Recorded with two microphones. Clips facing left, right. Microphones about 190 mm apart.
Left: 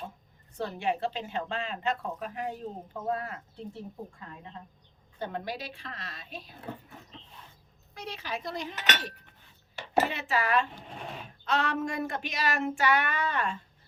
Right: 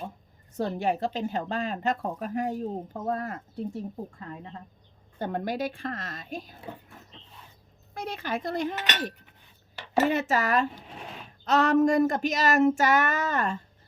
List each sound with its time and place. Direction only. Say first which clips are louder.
0.5 s speech: right 4 dB; 40° right (ahead or behind)
5.2 s speech: right 6 dB; 50° right (ahead or behind)
7.9 s speech: right 5 dB; 50° right (ahead or behind)
10.8 s a sound: left 1 dB; centre (ahead or behind)
11.4 s speech: right 9 dB; 40° right (ahead or behind)